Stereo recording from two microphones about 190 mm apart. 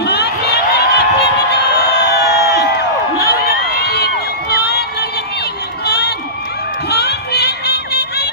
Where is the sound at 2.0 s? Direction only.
55° left (ahead or behind).